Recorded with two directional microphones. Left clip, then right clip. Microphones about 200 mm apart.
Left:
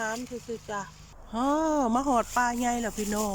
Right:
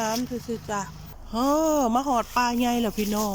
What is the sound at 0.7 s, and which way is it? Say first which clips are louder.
Speech: right 5 dB; 5° right (ahead or behind).